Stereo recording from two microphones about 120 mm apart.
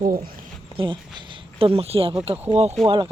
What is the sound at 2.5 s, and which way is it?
Speech, 60° right (ahead or behind).